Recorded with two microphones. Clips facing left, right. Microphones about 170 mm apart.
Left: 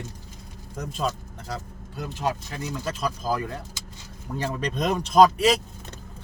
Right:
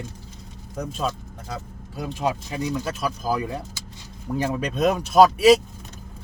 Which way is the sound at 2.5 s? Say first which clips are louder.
Right 4 dB; 10° right (ahead or behind).